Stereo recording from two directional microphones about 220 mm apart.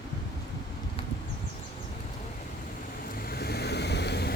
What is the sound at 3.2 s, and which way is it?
Vehicle, 45° left (ahead or behind).